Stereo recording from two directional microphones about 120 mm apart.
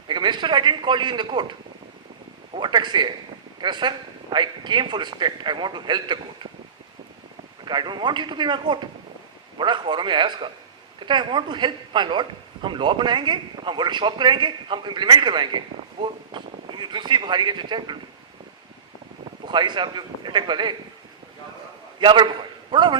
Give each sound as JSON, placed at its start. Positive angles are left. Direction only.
{"t": 0.1, "sound": "a man's voice", "side_deg": -40}
{"t": 2.6, "sound": "a man's voice", "side_deg": -40}
{"t": 7.6, "sound": "a man's voice", "side_deg": -40}
{"t": 19.5, "sound": "a man's voice", "side_deg": -40}
{"t": 22.0, "sound": "a man's voice", "side_deg": -40}